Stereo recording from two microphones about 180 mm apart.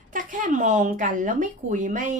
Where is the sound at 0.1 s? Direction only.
45° right (ahead or behind).